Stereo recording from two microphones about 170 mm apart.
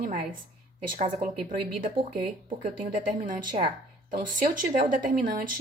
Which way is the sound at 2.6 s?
50° right (ahead or behind).